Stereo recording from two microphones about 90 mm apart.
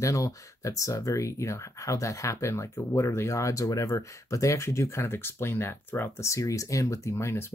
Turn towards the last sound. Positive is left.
turn(degrees=30)  # may be behind; listen again after turning